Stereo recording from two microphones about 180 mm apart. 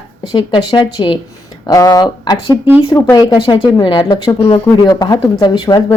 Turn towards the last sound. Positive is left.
turn(degrees=25)  # may be behind; listen again after turning